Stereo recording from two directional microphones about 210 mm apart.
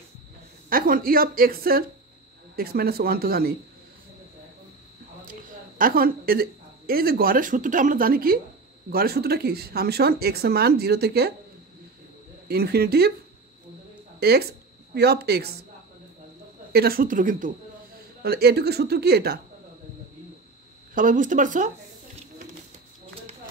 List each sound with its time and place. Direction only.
0.7 s speech: 40° right (ahead or behind)
5.2 s a woman's voice: 40° right (ahead or behind)
12.4 s speech: 45° right (ahead or behind)
14.2 s speech: 45° right (ahead or behind)
16.7 s speech: 45° right (ahead or behind)
20.9 s speech: 40° right (ahead or behind)